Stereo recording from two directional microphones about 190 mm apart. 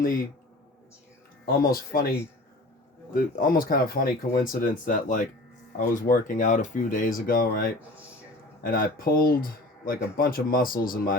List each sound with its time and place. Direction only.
0.0 s speech: 45° left (ahead or behind)
1.5 s speech: 50° left (ahead or behind)